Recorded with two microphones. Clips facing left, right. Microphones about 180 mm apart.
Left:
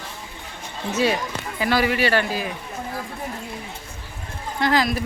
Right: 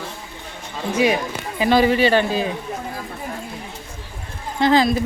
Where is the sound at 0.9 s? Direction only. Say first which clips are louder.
Right 3 dB; 15° right (ahead or behind).